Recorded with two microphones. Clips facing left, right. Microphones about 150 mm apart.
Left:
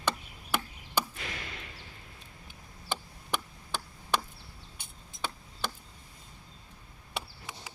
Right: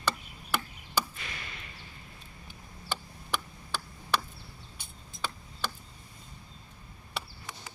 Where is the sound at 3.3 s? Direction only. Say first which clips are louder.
Even; 20° left (ahead or behind).